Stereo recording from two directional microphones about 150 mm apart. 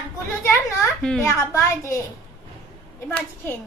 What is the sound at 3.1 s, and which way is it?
Speech, 15° left (ahead or behind).